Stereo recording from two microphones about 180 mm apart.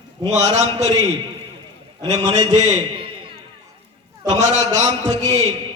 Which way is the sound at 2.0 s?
20° right (ahead or behind).